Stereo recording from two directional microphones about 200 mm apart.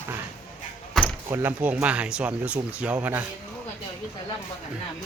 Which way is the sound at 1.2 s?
10° right (ahead or behind).